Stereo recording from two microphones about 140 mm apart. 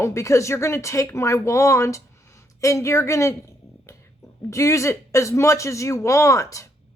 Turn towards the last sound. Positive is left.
turn(degrees=25)  # may be behind; listen again after turning